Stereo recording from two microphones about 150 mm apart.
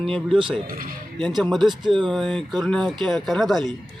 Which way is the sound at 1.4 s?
Centre (ahead or behind).